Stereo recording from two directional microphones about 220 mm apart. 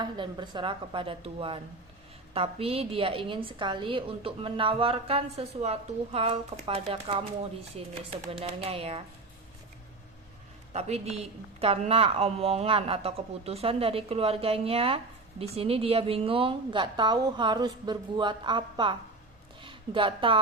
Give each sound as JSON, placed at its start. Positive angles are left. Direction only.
{"t": 0.0, "sound": "a woman's voice", "side_deg": -20}
{"t": 10.7, "sound": "a woman's voice", "side_deg": -30}